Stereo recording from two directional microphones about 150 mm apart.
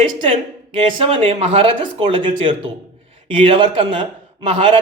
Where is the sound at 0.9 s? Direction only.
35° right (ahead or behind).